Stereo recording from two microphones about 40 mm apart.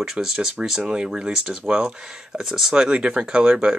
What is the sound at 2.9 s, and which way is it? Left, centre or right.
Speech, right.